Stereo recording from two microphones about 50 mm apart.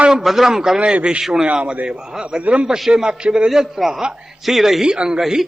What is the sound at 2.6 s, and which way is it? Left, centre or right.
Speech, centre.